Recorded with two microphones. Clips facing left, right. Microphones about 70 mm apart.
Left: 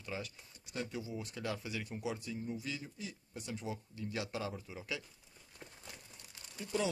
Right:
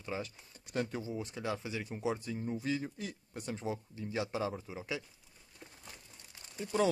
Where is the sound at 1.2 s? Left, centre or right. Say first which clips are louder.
Right 3 dB; right.